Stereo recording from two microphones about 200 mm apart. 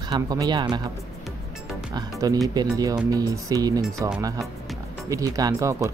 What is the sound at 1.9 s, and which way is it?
Music, 20° right (ahead or behind).